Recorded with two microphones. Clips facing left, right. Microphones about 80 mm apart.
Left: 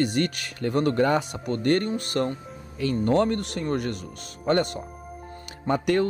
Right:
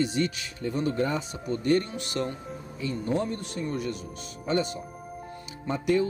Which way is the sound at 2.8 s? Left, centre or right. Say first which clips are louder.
Left 7 dB; left.